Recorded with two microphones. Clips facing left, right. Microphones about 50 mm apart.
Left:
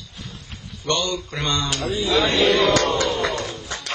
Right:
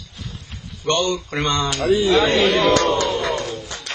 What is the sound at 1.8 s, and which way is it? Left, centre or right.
Speech, right.